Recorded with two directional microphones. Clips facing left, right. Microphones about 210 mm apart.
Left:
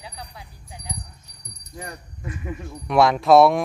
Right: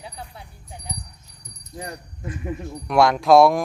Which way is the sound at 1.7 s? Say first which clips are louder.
Right 2 dB; 30° right (ahead or behind).